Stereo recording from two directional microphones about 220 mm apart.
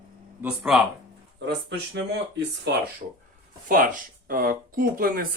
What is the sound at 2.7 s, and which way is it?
Speech, 50° right (ahead or behind).